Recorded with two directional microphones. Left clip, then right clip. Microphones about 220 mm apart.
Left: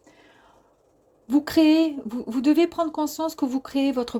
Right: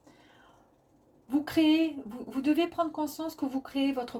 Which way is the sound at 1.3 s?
45° left (ahead or behind).